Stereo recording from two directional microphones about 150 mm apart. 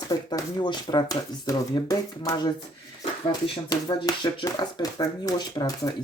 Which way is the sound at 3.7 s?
30° left (ahead or behind).